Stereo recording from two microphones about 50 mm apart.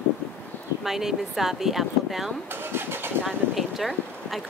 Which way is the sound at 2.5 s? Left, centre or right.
Right.